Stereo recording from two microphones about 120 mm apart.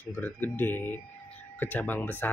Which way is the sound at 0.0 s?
15° left (ahead or behind).